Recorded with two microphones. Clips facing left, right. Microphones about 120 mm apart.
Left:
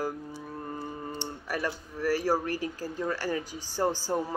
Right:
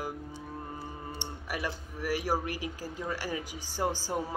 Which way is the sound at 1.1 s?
15° right (ahead or behind).